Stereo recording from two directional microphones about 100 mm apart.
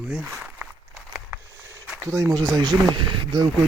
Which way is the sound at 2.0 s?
30° right (ahead or behind).